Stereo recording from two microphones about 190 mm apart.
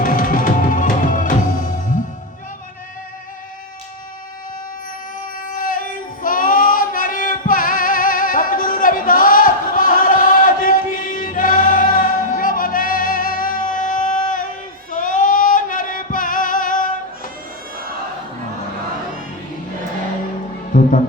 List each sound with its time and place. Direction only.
0.0 s music: 45° left (ahead or behind)
5.2 s child singing: 45° left (ahead or behind)
14.9 s singing: 45° left (ahead or behind)
20.7 s music: 45° left (ahead or behind)